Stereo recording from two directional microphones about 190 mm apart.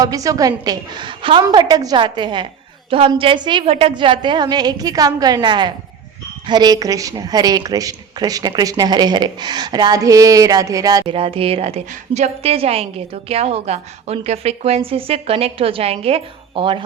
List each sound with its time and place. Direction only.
0.0 s speech: 20° right (ahead or behind)